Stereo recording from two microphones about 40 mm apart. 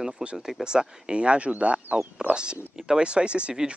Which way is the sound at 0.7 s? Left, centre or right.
Right.